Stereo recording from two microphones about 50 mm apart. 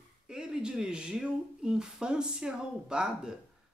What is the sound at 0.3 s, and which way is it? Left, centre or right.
Speech, centre.